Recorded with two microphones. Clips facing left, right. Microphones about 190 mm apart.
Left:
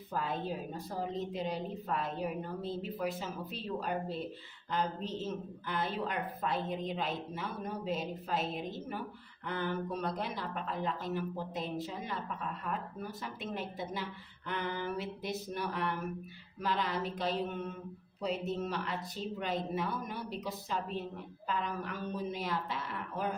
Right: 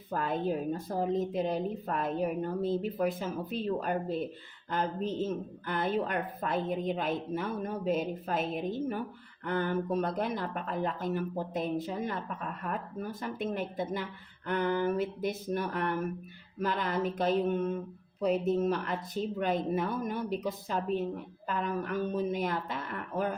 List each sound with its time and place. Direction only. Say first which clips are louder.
0.1 s a woman's voice: right 5 dB; 50° right (ahead or behind)
9.5 s a woman's voice: right 5 dB; 50° right (ahead or behind)